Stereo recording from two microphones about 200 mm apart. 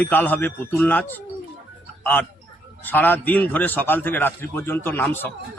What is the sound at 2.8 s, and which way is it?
A man's voice, 10° left (ahead or behind).